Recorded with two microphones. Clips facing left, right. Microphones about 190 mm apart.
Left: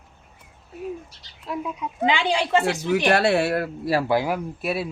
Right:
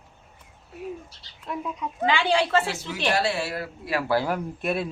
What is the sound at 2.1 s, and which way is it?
Speech, 15° left (ahead or behind).